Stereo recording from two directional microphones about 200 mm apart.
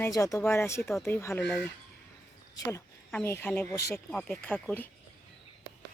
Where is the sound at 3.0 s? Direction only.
10° left (ahead or behind).